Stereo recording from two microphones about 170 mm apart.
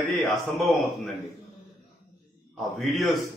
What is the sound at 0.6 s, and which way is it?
Speech, centre (ahead or behind).